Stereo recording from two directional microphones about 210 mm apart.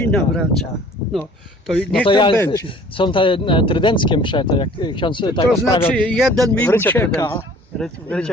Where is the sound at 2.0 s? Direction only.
25° left (ahead or behind).